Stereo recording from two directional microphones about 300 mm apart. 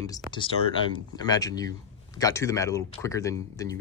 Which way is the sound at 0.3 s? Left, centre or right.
Centre.